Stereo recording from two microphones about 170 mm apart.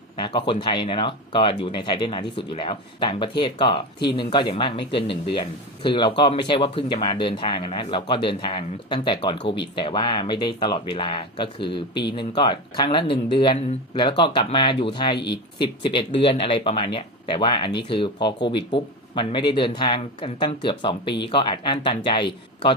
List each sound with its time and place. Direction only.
0.2 s a man's voice: 30° left (ahead or behind)